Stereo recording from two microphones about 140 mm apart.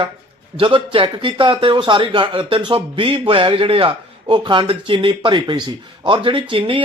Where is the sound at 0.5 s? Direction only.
40° right (ahead or behind).